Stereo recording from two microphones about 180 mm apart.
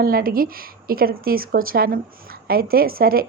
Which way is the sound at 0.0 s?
55° right (ahead or behind).